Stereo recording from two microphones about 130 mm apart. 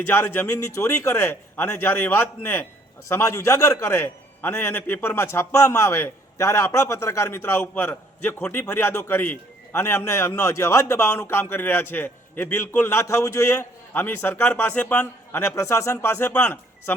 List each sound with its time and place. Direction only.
0.1 s a man's voice: 15° left (ahead or behind)